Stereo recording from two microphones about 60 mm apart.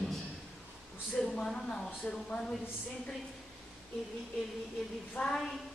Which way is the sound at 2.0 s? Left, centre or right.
Centre.